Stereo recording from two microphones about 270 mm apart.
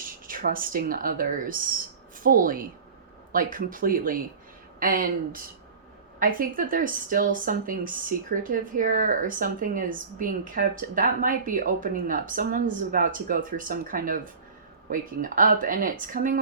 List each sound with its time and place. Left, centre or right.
0.3 s speech: right